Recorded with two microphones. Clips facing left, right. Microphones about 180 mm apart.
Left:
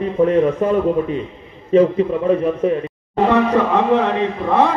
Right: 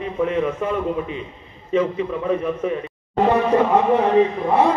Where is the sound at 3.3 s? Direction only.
90° left.